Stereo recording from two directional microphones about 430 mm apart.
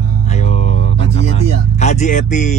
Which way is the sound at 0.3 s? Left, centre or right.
Centre.